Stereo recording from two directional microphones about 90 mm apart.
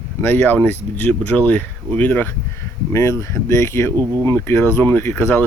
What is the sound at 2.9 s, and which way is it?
Speech, 35° left (ahead or behind).